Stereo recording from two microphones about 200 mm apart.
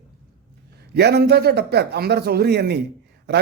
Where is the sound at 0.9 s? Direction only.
55° right (ahead or behind).